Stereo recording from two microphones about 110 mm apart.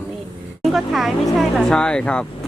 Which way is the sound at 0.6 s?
Centre (ahead or behind).